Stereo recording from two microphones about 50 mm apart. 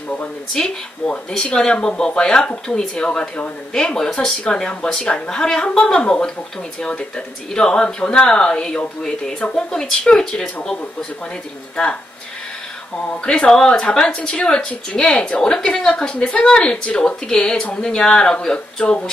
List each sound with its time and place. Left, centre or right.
0.5 s a woman's voice: centre
13.2 s a woman's voice: centre